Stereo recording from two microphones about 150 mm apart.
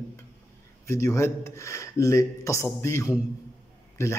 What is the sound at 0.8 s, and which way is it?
Speech, 20° left (ahead or behind).